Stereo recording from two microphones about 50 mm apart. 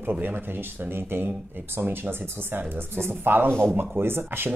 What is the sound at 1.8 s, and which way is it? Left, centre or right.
Speech, right.